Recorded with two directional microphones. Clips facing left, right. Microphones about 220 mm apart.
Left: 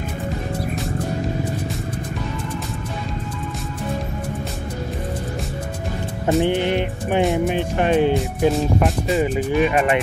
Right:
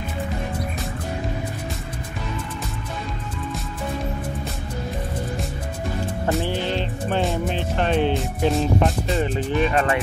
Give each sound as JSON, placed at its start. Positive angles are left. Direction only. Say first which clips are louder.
{"t": 6.2, "sound": "speech", "louder": "left 7 dB", "side_deg": 15}